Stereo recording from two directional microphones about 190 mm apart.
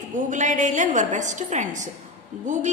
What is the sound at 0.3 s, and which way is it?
A woman's voice, 40° right (ahead or behind).